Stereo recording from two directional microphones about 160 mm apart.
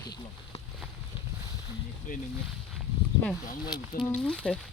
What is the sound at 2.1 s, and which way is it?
Speech, 60° left (ahead or behind).